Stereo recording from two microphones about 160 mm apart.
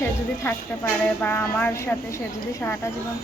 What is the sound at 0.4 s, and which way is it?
A woman's voice, 15° left (ahead or behind).